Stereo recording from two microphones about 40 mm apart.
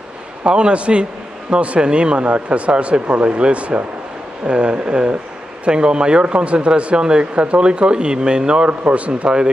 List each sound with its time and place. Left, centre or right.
0.5 s speech: right